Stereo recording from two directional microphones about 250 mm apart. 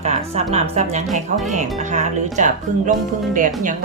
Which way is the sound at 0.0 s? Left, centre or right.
Right.